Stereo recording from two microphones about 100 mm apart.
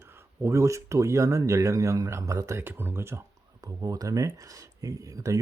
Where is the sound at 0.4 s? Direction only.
30° right (ahead or behind).